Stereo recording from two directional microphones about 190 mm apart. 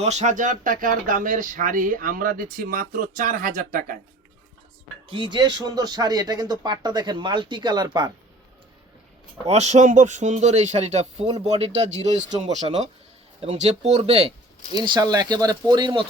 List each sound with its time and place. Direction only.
0.0 s speech: 35° right (ahead or behind)
5.0 s speech: 25° right (ahead or behind)
9.5 s speech: 35° right (ahead or behind)